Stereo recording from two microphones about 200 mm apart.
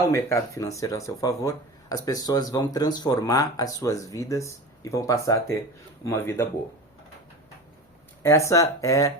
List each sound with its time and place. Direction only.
0.0 s speech: 15° left (ahead or behind)
8.2 s speech: 15° left (ahead or behind)